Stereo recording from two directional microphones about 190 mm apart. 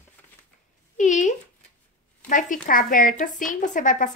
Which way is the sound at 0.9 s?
40° left (ahead or behind).